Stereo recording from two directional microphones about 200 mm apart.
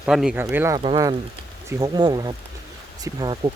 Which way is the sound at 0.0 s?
5° right (ahead or behind).